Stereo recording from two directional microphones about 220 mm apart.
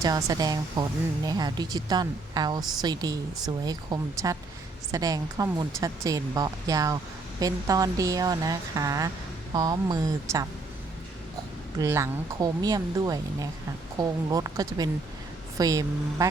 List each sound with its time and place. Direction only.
0.0 s speech: 15° right (ahead or behind)
11.8 s speech: 15° right (ahead or behind)